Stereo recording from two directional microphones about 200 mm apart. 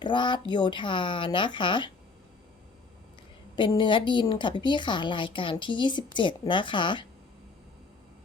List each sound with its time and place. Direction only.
0.0 s a woman's voice: 25° left (ahead or behind)
3.5 s a woman's voice: 25° left (ahead or behind)